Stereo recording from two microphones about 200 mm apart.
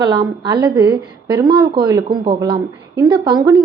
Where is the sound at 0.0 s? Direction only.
20° right (ahead or behind).